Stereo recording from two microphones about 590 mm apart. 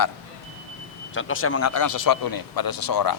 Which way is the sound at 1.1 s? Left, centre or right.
Centre.